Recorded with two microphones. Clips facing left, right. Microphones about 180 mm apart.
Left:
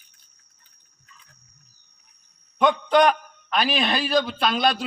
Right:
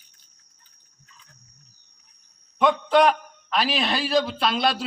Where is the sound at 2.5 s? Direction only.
Centre (ahead or behind).